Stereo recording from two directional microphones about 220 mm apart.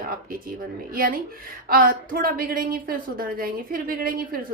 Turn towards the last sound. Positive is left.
turn(degrees=-40)  # may be behind; listen again after turning